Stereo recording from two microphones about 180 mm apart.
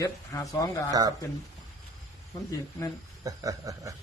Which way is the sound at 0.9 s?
20° right (ahead or behind).